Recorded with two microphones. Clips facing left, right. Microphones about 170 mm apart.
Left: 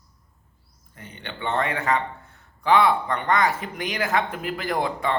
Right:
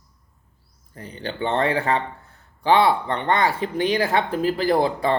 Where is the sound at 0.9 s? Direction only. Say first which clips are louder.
Right 7 dB; 35° right (ahead or behind).